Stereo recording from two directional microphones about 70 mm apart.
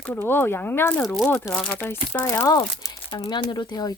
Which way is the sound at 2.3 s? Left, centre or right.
Left.